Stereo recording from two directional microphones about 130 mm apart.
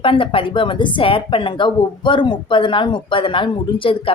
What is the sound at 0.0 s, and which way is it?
Speech, 45° left (ahead or behind).